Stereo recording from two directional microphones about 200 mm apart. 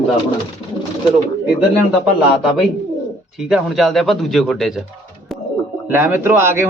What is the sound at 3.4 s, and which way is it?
Speech, centre (ahead or behind).